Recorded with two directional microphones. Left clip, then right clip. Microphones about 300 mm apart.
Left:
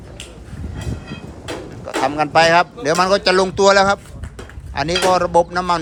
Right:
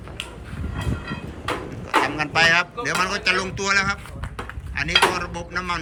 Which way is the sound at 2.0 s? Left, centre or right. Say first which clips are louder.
Left 8 dB; centre.